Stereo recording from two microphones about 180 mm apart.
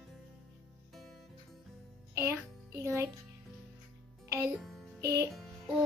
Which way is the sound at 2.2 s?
15° right (ahead or behind).